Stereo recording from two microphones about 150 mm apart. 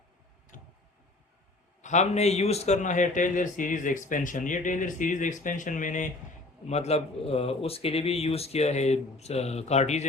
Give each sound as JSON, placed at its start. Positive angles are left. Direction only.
{"t": 0.5, "sound": "tick", "side_deg": 60}
{"t": 1.8, "sound": "speech", "side_deg": 50}
{"t": 6.7, "sound": "speech", "side_deg": 45}